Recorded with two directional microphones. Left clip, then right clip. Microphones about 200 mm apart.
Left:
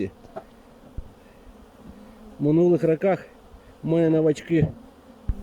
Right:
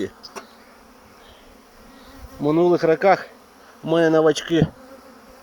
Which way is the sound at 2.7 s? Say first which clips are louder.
Right 5 dB; 10° left (ahead or behind).